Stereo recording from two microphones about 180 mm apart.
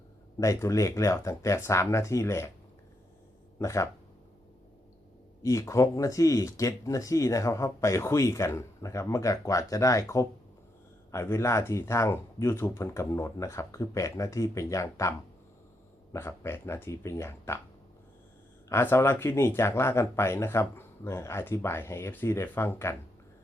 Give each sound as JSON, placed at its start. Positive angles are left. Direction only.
{"t": 0.3, "sound": "speech", "side_deg": 15}
{"t": 3.6, "sound": "speech", "side_deg": 15}
{"t": 5.4, "sound": "speech", "side_deg": 15}
{"t": 16.1, "sound": "speech", "side_deg": 15}
{"t": 18.7, "sound": "speech", "side_deg": 15}